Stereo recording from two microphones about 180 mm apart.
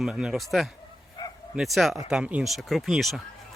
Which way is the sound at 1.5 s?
Centre (ahead or behind).